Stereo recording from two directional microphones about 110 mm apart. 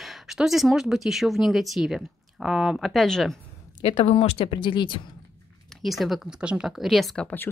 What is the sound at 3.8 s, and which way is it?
A woman's voice, 55° left (ahead or behind).